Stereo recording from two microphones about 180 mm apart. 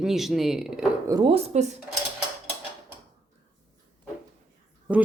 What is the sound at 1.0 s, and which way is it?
Speech, 20° right (ahead or behind).